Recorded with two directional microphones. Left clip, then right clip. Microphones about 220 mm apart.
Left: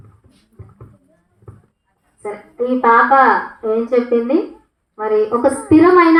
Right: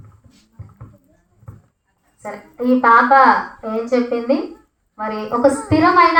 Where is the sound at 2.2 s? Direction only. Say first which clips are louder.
Left 1 dB; 50° right (ahead or behind).